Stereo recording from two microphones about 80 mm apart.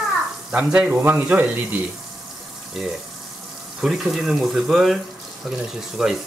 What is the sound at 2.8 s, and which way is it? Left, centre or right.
Speech, centre.